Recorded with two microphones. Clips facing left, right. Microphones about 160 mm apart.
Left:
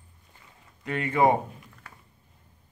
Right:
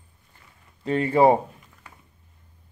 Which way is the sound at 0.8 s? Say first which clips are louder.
Right 5 dB; 30° right (ahead or behind).